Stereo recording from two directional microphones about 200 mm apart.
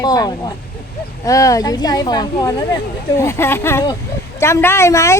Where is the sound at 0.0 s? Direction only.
20° left (ahead or behind).